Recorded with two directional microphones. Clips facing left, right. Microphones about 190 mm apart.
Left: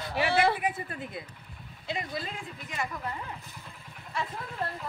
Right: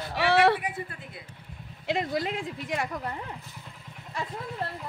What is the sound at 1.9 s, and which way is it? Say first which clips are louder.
Speech: right 7 dB; 75° right (ahead or behind).